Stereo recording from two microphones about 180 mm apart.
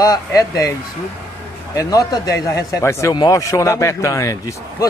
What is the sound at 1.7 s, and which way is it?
Speech, 20° left (ahead or behind).